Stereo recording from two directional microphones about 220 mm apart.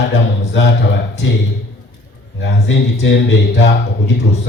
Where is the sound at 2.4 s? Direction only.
50° left (ahead or behind).